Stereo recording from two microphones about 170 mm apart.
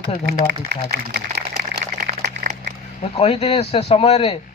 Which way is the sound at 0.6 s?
65° right (ahead or behind).